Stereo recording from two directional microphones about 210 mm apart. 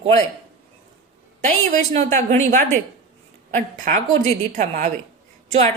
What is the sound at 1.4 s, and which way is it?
A woman's voice, 35° right (ahead or behind).